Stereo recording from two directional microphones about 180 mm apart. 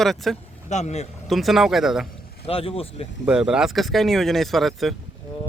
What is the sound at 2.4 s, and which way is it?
Speech, 30° left (ahead or behind).